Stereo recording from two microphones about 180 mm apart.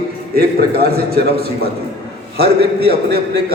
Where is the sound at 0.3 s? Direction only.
60° right (ahead or behind).